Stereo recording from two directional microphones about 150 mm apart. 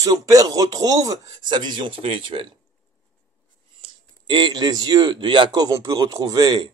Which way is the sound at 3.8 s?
35° right (ahead or behind).